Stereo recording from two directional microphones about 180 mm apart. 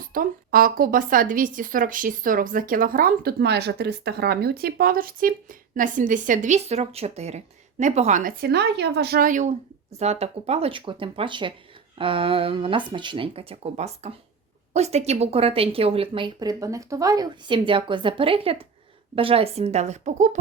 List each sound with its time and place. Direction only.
0.1 s a woman's voice: 50° right (ahead or behind)
8.4 s a woman's voice: 65° right (ahead or behind); by 20.4 s 40° right (ahead or behind)